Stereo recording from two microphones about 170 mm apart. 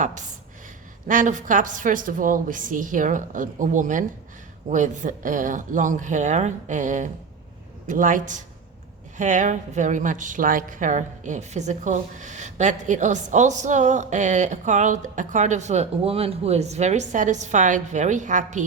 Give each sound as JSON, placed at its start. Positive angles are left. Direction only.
{"t": 0.0, "sound": "a woman's voice", "side_deg": -45}